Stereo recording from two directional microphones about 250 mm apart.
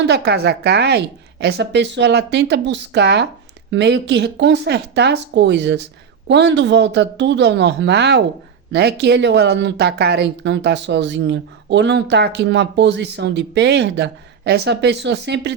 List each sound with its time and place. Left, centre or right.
0.0 s speech: right